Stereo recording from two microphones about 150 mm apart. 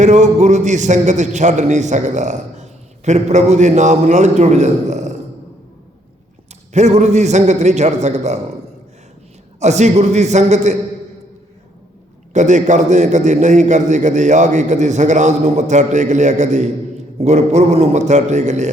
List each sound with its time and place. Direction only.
0.0 s a man's voice: 50° right (ahead or behind)
6.7 s a man's voice: 50° right (ahead or behind)
9.6 s a man's voice: 50° right (ahead or behind)
12.3 s a man's voice: 55° right (ahead or behind)